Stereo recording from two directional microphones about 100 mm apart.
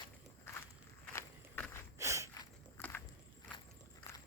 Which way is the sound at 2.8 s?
20° left (ahead or behind).